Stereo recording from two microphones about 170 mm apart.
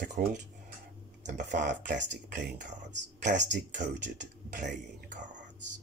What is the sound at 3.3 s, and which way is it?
Speech, 90° right.